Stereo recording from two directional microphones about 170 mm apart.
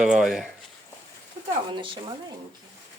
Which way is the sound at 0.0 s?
Centre (ahead or behind).